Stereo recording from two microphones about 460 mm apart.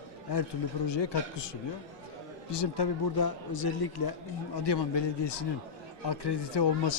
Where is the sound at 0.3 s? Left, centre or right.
Left.